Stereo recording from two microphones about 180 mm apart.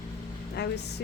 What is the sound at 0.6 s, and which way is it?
Speech, 70° left (ahead or behind).